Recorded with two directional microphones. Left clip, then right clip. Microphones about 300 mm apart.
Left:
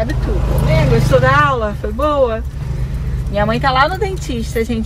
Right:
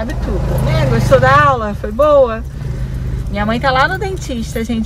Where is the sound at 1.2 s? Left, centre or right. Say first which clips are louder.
Right 3 dB; centre.